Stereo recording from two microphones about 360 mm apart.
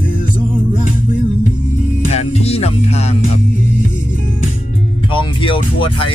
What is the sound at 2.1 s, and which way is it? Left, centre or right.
Speech, centre.